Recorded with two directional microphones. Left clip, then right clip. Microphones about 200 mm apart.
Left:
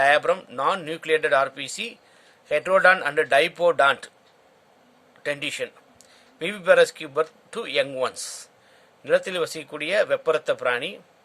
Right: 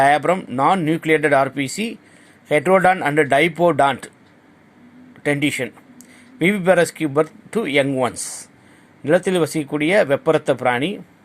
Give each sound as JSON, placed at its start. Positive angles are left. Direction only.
{"t": 0.0, "sound": "speech", "side_deg": -25}
{"t": 5.2, "sound": "a man's voice", "side_deg": -25}